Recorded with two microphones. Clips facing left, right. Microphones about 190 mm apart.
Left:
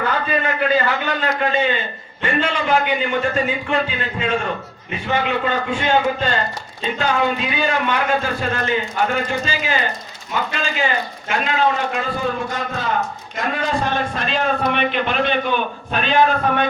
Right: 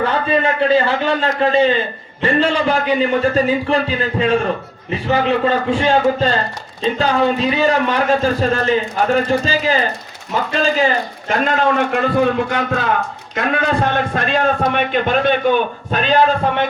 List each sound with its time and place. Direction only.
0.0 s a man's voice: 30° right (ahead or behind); by 11.8 s 45° right (ahead or behind)
11.8 s a man's voice: 60° right (ahead or behind); by 16.1 s 45° right (ahead or behind)